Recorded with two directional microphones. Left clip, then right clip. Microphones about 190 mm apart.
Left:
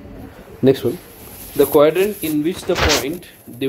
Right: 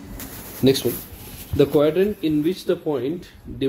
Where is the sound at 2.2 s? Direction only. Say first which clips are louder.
Left 1 dB; 15° left (ahead or behind).